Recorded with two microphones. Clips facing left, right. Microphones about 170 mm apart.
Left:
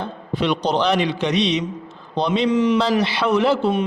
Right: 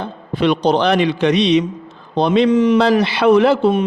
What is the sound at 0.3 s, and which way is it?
A man's voice, 55° right (ahead or behind).